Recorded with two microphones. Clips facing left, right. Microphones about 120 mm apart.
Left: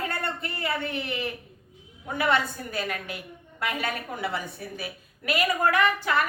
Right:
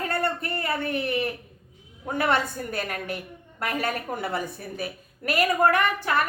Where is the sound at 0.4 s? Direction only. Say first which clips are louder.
Right 2 dB; 50° right (ahead or behind).